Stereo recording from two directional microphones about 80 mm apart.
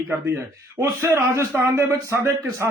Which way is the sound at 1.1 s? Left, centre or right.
Right.